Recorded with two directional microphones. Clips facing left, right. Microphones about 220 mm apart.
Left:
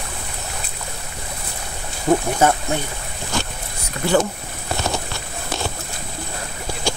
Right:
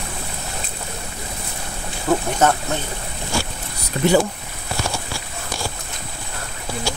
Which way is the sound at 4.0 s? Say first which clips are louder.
Right 6 dB; 30° right (ahead or behind).